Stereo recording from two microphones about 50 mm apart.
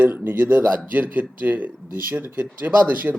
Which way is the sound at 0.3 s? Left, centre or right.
Right.